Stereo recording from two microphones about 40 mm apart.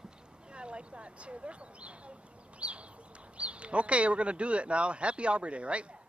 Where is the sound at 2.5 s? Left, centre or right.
Right.